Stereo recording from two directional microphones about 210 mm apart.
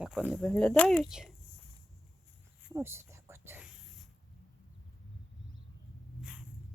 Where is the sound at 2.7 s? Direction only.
10° right (ahead or behind).